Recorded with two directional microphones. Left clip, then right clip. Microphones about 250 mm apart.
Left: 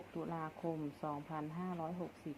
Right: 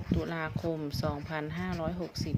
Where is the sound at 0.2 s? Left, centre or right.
Right.